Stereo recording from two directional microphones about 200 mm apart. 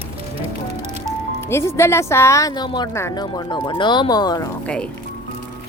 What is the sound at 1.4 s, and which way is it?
Speech, 10° left (ahead or behind).